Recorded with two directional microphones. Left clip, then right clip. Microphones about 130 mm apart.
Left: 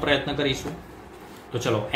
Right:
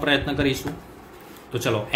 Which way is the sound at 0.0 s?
30° right (ahead or behind).